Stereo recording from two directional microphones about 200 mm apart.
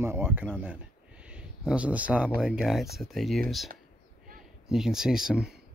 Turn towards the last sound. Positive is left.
turn(degrees=-5)  # may be behind; listen again after turning